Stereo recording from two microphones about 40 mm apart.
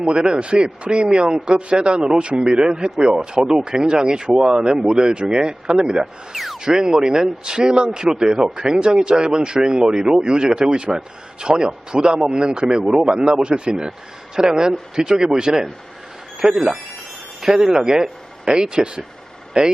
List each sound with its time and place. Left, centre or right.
0.1 s speech: right
6.3 s speech: centre
6.6 s a man's voice: centre